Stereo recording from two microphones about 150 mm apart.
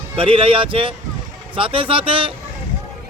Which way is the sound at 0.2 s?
35° right (ahead or behind).